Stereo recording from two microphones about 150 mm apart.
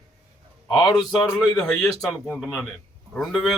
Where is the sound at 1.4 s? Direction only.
Centre (ahead or behind).